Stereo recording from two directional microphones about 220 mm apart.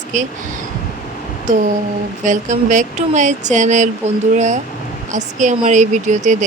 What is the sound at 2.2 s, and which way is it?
A woman's voice, 35° right (ahead or behind).